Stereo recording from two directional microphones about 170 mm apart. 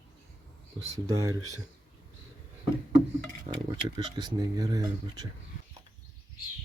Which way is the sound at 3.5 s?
35° right (ahead or behind).